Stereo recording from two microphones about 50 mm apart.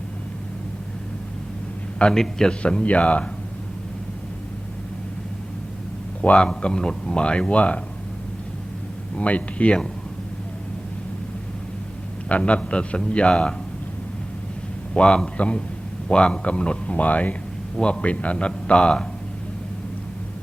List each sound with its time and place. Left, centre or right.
2.0 s a man's voice: centre
6.2 s speech: centre
9.1 s speech: left
12.3 s speech: left
14.9 s speech: centre
17.7 s speech: centre